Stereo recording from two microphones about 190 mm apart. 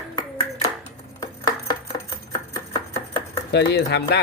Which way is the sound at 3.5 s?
65° left (ahead or behind).